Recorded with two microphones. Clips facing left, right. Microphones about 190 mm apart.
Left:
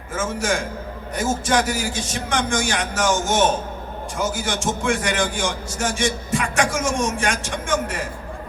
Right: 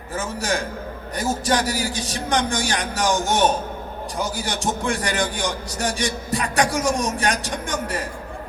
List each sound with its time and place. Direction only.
0.1 s a man's voice: 35° right (ahead or behind)
4.2 s a man's voice: 35° right (ahead or behind)